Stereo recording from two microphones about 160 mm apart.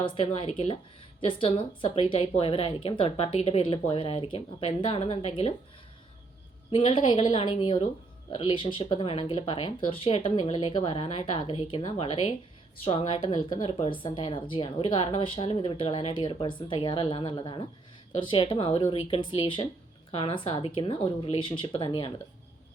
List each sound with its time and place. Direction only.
0.0 s a woman's voice: 35° left (ahead or behind)
6.7 s a woman's voice: 35° left (ahead or behind)